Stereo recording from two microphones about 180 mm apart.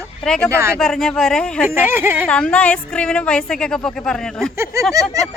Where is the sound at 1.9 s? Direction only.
10° right (ahead or behind).